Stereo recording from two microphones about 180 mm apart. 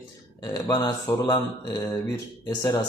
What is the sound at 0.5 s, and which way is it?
Mantra, 20° left (ahead or behind).